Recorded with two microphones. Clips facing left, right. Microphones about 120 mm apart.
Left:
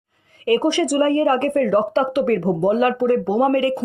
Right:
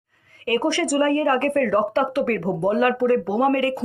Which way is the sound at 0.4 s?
20° left (ahead or behind).